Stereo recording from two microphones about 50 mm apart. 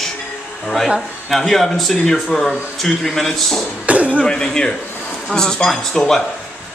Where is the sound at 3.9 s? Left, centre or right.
Right.